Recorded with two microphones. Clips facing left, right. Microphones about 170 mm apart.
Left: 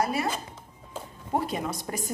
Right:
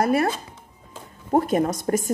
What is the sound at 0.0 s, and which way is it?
Speech, 55° right (ahead or behind).